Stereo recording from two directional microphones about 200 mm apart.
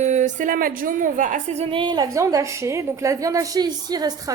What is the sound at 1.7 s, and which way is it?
A woman's voice, 20° right (ahead or behind).